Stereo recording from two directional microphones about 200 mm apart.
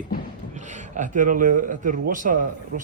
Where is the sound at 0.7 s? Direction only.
40° right (ahead or behind).